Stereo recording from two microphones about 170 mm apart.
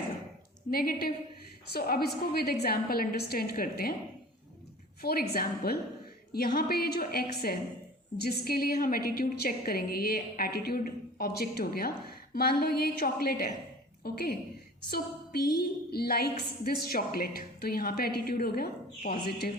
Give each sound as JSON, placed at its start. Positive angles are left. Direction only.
{"t": 0.7, "sound": "a woman's voice", "side_deg": 60}
{"t": 5.0, "sound": "a woman's voice", "side_deg": 65}